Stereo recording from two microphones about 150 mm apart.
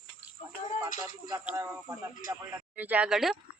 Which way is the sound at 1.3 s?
15° right (ahead or behind).